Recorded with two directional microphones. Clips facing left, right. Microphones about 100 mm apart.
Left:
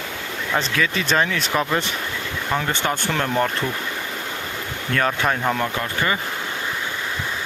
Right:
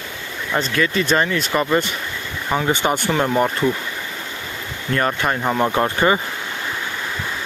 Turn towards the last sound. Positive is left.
turn(degrees=-30)  # may be behind; listen again after turning